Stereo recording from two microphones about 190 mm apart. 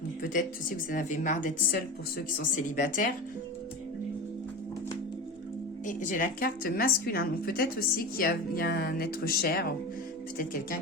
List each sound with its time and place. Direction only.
0.9 s a woman's voice: 45° left (ahead or behind)
5.8 s a woman's voice: 45° left (ahead or behind)